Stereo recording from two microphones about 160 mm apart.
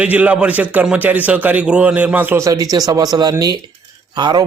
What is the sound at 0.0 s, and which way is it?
A man's voice, 10° right (ahead or behind).